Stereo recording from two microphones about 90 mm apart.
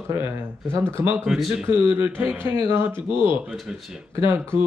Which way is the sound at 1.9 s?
25° right (ahead or behind).